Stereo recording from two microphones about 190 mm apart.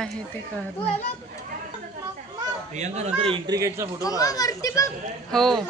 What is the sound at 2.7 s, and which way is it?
Speech, 35° right (ahead or behind).